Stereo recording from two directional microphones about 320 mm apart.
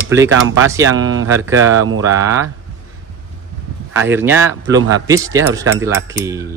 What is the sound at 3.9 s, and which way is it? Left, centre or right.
Speech, centre.